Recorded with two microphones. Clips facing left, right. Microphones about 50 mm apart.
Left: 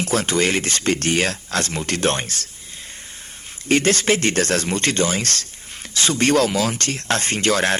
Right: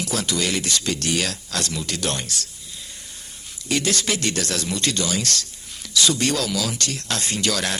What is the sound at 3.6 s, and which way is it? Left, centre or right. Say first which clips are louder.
Speech: left 6 dB; left.